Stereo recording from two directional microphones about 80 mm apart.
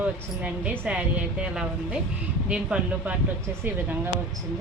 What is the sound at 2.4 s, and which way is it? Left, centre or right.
Speech, centre.